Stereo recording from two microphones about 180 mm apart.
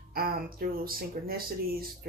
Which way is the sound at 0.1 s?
55° right (ahead or behind).